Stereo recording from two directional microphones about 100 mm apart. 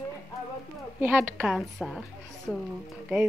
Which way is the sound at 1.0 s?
20° right (ahead or behind).